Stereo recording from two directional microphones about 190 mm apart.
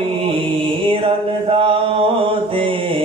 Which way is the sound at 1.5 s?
30° right (ahead or behind).